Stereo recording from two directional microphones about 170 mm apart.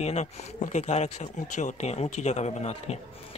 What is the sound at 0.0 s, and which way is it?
Speech, 40° left (ahead or behind).